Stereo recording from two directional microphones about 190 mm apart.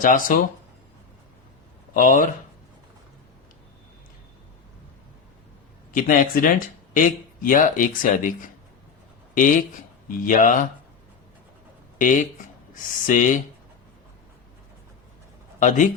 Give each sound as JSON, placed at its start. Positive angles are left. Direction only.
{"t": 0.0, "sound": "speech", "side_deg": 45}
{"t": 1.9, "sound": "speech", "side_deg": 45}
{"t": 5.9, "sound": "speech", "side_deg": 45}
{"t": 11.9, "sound": "speech", "side_deg": 45}
{"t": 15.6, "sound": "speech", "side_deg": 40}